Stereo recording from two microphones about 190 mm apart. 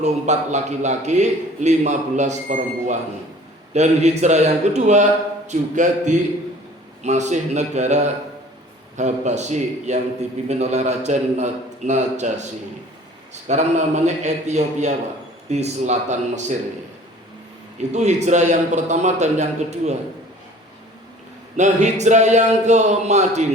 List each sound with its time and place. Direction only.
0.0 s a man's voice: 35° right (ahead or behind)
17.7 s a man's voice: 35° right (ahead or behind)
21.5 s a man's voice: 40° right (ahead or behind)